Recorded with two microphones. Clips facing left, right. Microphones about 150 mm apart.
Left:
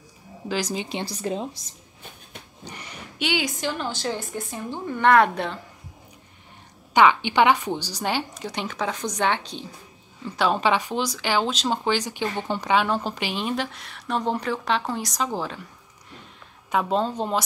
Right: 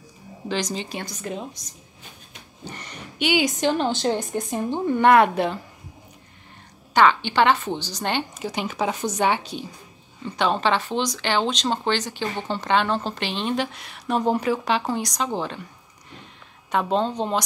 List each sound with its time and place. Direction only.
0.5 s speech: 10° left (ahead or behind)
0.8 s a woman's voice: 30° left (ahead or behind)
2.6 s a sound: 10° left (ahead or behind)
3.3 s a woman's voice: 20° right (ahead or behind)
5.0 s speech: 10° right (ahead or behind)
6.9 s a woman's voice: 15° left (ahead or behind); by 9.7 s 5° right (ahead or behind)
10.2 s speech: 5° left (ahead or behind)
16.7 s a woman's voice: 5° left (ahead or behind)